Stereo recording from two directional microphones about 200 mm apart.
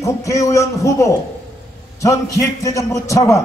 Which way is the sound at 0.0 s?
15° left (ahead or behind).